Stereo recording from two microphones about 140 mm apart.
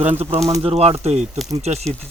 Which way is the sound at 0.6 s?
45° right (ahead or behind).